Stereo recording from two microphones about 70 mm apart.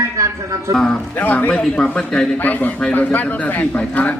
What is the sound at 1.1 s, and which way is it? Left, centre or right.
A man's voice, left.